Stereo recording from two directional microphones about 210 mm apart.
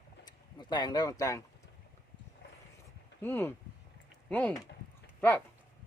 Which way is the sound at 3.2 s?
10° left (ahead or behind).